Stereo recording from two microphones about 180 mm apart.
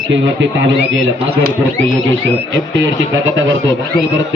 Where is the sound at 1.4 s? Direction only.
55° right (ahead or behind).